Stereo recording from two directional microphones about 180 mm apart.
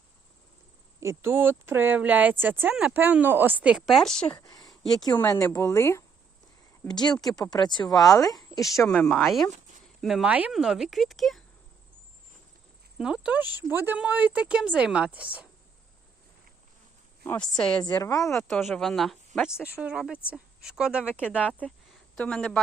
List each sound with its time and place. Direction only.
0.9 s speech: 15° right (ahead or behind); by 4.3 s centre (ahead or behind)
4.3 s speech: 20° left (ahead or behind)
7.3 s a woman's voice: 20° left (ahead or behind)
8.9 s speech: 5° left (ahead or behind)
13.0 s speech: 5° right (ahead or behind)
17.2 s speech: 5° left (ahead or behind)
18.0 s speech: 20° left (ahead or behind)
18.6 s speech: centre (ahead or behind)
22.1 s speech: 5° left (ahead or behind)